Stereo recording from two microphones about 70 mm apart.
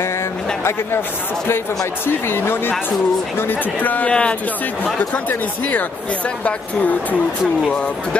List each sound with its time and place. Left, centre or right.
2.0 s speech: left